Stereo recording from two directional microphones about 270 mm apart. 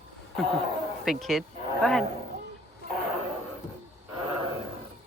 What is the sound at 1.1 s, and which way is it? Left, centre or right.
Speech, centre.